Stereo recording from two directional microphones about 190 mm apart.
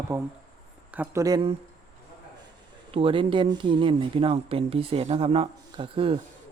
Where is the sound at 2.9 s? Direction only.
30° right (ahead or behind).